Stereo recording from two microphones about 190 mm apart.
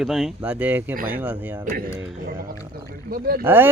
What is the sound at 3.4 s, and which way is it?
Speech, 10° right (ahead or behind).